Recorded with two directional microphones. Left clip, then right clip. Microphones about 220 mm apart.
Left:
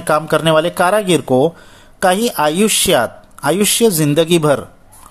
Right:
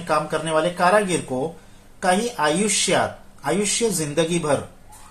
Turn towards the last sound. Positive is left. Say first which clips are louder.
# left 8 dB
turn(degrees=50)  # may be behind; listen again after turning